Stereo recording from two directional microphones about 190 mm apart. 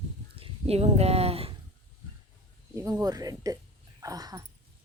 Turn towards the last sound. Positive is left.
turn(degrees=-20)  # may be behind; listen again after turning